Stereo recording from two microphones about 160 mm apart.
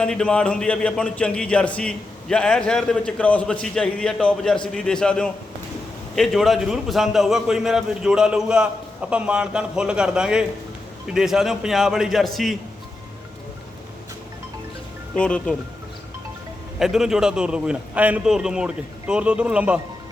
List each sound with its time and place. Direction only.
0.0 s speech: 5° left (ahead or behind)
15.1 s speech: 5° left (ahead or behind)
16.8 s speech: 5° right (ahead or behind)